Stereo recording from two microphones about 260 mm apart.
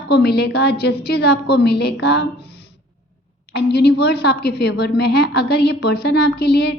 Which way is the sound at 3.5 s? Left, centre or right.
Left.